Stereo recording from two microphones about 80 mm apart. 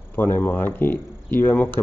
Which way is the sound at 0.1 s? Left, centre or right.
Left.